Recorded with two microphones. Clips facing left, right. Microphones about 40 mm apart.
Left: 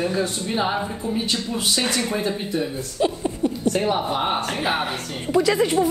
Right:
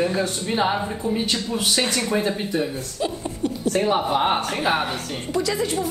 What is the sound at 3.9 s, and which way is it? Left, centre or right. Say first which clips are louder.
Speech: right 2 dB; right.